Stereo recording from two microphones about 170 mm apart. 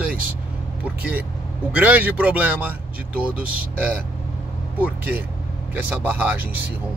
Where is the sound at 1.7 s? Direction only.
10° right (ahead or behind).